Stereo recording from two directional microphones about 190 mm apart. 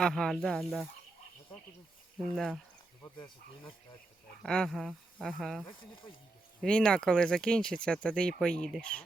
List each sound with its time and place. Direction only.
0.0 s speech: centre (ahead or behind)
2.1 s speech: centre (ahead or behind)
3.2 s speech: 25° left (ahead or behind)
4.4 s speech: 5° left (ahead or behind)
5.6 s speech: 25° left (ahead or behind)
6.6 s speech: 5° left (ahead or behind)